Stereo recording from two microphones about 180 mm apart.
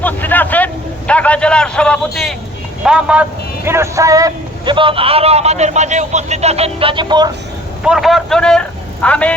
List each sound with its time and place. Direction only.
0.0 s a man's voice: 10° left (ahead or behind); by 7.3 s 25° right (ahead or behind)
7.9 s a man's voice: centre (ahead or behind)